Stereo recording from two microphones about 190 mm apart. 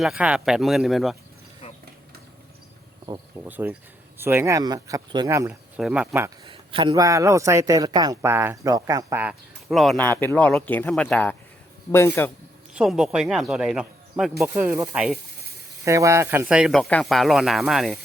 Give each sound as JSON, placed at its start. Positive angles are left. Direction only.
{"t": 0.0, "sound": "speech", "side_deg": -5}
{"t": 1.6, "sound": "a sound", "side_deg": 30}
{"t": 3.4, "sound": "a man's voice", "side_deg": -10}
{"t": 6.5, "sound": "a man's voice", "side_deg": -25}
{"t": 9.6, "sound": "speech", "side_deg": 0}
{"t": 12.7, "sound": "speech", "side_deg": 0}
{"t": 14.5, "sound": "a man's voice", "side_deg": -10}
{"t": 15.8, "sound": "speech", "side_deg": -15}